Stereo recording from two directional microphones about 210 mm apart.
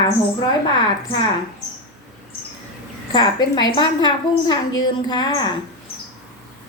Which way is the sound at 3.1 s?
20° left (ahead or behind).